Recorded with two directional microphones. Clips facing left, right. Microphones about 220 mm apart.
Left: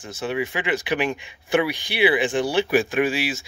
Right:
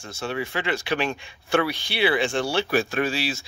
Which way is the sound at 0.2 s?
15° left (ahead or behind).